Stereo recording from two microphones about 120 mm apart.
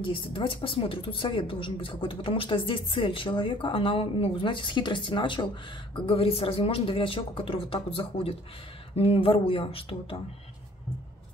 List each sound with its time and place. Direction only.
0.0 s a woman's voice: 45° left (ahead or behind)